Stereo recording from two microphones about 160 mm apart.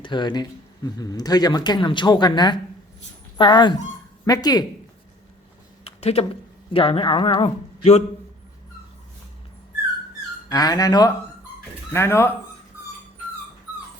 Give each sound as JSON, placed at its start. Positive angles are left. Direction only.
{"t": 0.0, "sound": "speech", "side_deg": 30}
{"t": 5.8, "sound": "a sound", "side_deg": 40}
{"t": 6.7, "sound": "speech", "side_deg": 35}
{"t": 10.5, "sound": "speech", "side_deg": 25}